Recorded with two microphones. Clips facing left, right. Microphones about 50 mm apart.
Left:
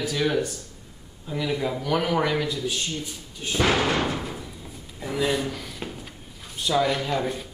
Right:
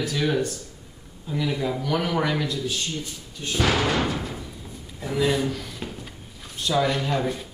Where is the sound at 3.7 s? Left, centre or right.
Centre.